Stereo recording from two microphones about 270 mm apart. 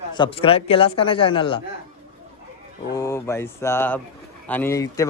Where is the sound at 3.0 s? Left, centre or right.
Centre.